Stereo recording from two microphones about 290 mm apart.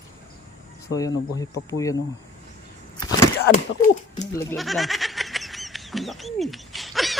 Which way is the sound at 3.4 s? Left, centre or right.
Left.